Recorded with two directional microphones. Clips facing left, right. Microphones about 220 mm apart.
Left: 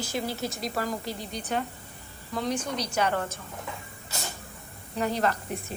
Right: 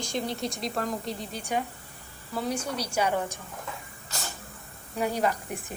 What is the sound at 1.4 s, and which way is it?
A woman's voice, 10° right (ahead or behind).